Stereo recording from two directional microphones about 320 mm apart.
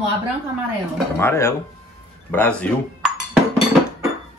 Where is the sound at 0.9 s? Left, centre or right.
Centre.